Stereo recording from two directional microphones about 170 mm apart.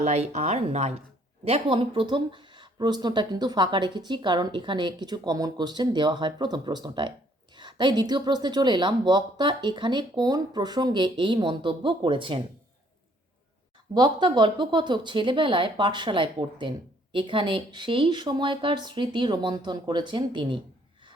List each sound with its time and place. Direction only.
0.0 s speech: 40° right (ahead or behind)
13.9 s speech: 25° right (ahead or behind)